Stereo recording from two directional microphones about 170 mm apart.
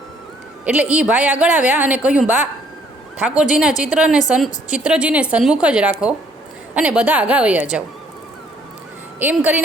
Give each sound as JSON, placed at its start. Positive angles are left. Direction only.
{"t": 0.6, "sound": "a woman's voice", "side_deg": -10}
{"t": 9.1, "sound": "speech", "side_deg": -10}